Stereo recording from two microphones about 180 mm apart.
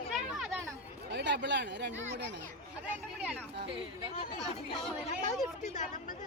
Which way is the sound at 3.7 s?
30° right (ahead or behind).